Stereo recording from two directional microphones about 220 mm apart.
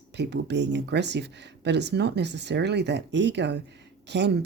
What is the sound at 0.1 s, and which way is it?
Speech, 50° right (ahead or behind).